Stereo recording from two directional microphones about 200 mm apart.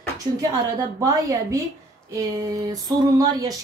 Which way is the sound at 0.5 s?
15° right (ahead or behind).